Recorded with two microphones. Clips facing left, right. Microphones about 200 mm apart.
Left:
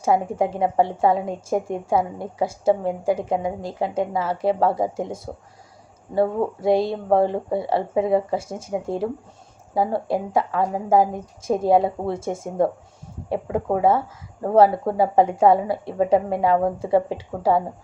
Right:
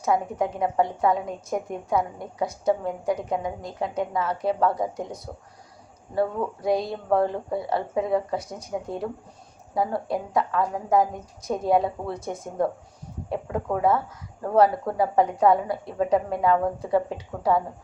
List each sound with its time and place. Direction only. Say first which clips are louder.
0.0 s a woman's voice: left 4 dB; 30° left (ahead or behind)